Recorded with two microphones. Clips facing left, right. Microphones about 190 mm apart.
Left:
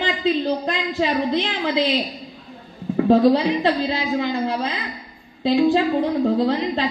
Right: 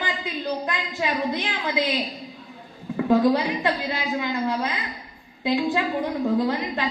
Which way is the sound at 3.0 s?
25° left (ahead or behind).